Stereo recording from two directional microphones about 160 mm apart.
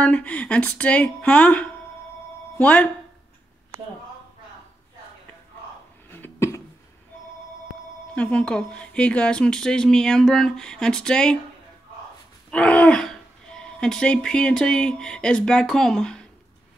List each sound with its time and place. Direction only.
0.0 s speech: 10° left (ahead or behind)
6.0 s cough: 15° left (ahead or behind)
8.1 s speech: 5° left (ahead or behind)
12.4 s speech: 5° left (ahead or behind)